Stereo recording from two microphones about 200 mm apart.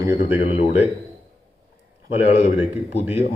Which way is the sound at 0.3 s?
30° left (ahead or behind).